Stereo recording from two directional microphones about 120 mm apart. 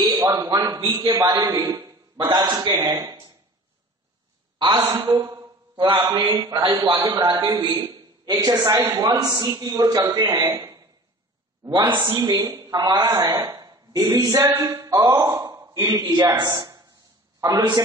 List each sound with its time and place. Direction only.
0.2 s a man's voice: 25° right (ahead or behind)
2.1 s speech: 40° right (ahead or behind)
4.8 s speech: 35° right (ahead or behind)
12.0 s a woman's voice: 35° right (ahead or behind)